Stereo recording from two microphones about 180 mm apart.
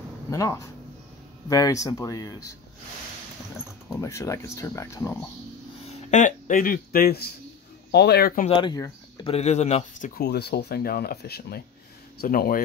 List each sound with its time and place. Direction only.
0.3 s speech: 15° left (ahead or behind)
4.0 s speech: 15° left (ahead or behind)
5.9 s speech: 40° left (ahead or behind); by 8.5 s 55° left (ahead or behind)
8.5 s speech: 25° left (ahead or behind); by 10.2 s 45° left (ahead or behind)
10.2 s speech: 65° left (ahead or behind)